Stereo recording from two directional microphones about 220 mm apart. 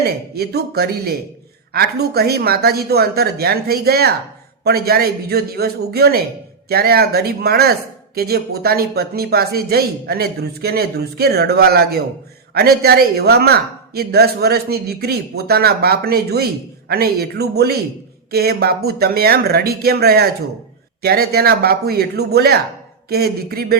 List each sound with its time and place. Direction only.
0.0 s speech: 45° right (ahead or behind)